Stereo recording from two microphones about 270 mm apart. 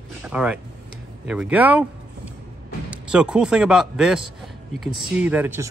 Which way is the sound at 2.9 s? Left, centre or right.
Centre.